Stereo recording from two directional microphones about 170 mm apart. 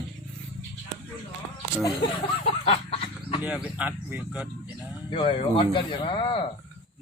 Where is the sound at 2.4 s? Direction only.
35° left (ahead or behind).